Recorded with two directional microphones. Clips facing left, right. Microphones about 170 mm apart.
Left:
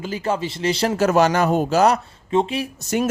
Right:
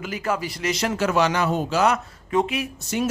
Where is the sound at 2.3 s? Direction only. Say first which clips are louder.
Left 2 dB; 30° left (ahead or behind).